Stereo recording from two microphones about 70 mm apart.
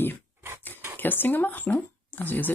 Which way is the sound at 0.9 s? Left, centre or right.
Left.